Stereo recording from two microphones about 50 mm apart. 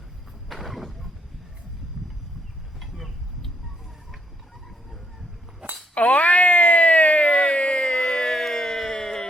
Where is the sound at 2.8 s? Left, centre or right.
Centre.